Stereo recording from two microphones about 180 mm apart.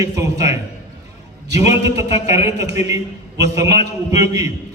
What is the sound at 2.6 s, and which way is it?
A man's voice, 15° right (ahead or behind).